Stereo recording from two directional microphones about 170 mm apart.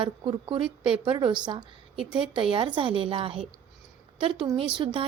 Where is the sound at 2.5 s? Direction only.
30° right (ahead or behind).